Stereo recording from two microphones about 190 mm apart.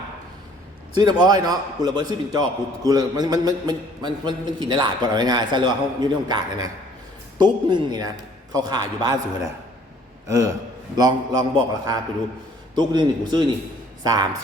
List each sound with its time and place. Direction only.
1.2 s a man's voice: 20° right (ahead or behind)
10.2 s a man's voice: 15° right (ahead or behind)